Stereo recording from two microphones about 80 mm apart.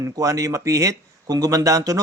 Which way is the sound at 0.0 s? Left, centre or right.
Right.